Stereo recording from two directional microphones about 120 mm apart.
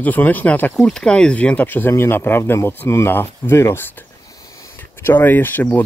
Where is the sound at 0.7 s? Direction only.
5° left (ahead or behind); by 3.9 s 20° left (ahead or behind).